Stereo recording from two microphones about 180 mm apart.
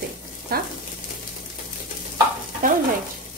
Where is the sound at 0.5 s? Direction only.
55° right (ahead or behind).